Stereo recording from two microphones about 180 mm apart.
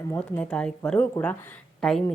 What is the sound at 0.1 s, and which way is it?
A woman's voice, 10° left (ahead or behind).